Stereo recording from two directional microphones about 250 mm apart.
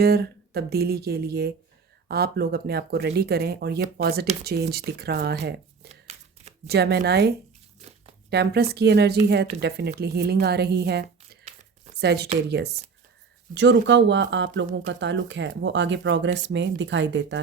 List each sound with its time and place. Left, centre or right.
0.0 s speech: right
5.9 s a sound: right
6.7 s speech: right
7.8 s crumpling: right
8.3 s a woman's voice: right